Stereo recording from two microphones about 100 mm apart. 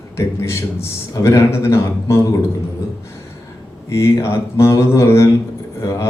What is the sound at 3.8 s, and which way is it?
Speech, 30° left (ahead or behind).